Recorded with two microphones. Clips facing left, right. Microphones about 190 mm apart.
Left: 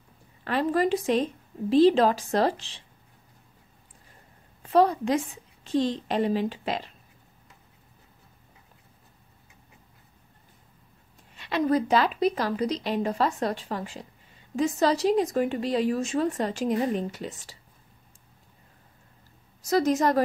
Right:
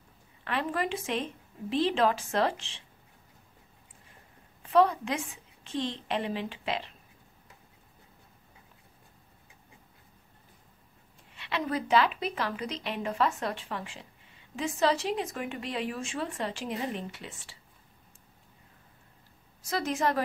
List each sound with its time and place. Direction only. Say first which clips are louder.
0.4 s speech: left 7 dB; 40° left (ahead or behind)
4.6 s speech: left 3 dB; 35° left (ahead or behind)
11.3 s speech: left 8 dB; 40° left (ahead or behind)
19.6 s speech: left 7 dB; 40° left (ahead or behind)